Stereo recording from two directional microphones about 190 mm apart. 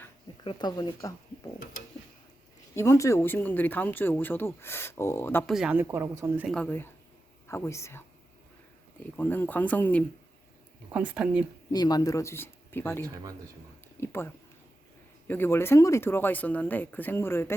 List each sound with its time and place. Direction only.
0.4 s speech: 25° left (ahead or behind)
2.7 s speech: 15° left (ahead or behind)
5.5 s speech: 5° right (ahead or behind)
6.5 s speech: 10° left (ahead or behind)
9.1 s speech: 10° left (ahead or behind)
10.9 s speech: 5° right (ahead or behind)
11.7 s speech: 20° left (ahead or behind)
15.3 s speech: 10° left (ahead or behind)